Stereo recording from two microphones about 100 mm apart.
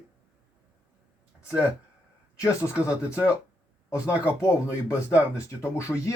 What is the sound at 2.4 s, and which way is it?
Speech, 30° left (ahead or behind).